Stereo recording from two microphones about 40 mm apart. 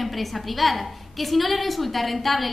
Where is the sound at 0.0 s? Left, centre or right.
Centre.